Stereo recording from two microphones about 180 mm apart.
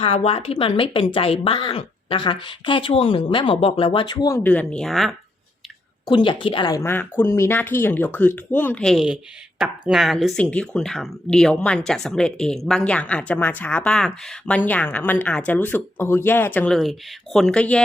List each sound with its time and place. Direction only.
0.0 s a woman's voice: 30° left (ahead or behind)
4.4 s speech: 5° left (ahead or behind)
6.1 s speech: 25° left (ahead or behind); by 17.8 s 5° left (ahead or behind)